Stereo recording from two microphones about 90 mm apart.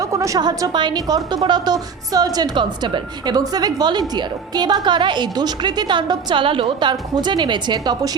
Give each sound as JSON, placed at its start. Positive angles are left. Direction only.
{"t": 0.0, "sound": "a woman's voice", "side_deg": -35}
{"t": 2.6, "sound": "a woman's voice", "side_deg": -60}
{"t": 6.4, "sound": "a woman's voice", "side_deg": -80}
{"t": 7.2, "sound": "a woman's voice", "side_deg": -55}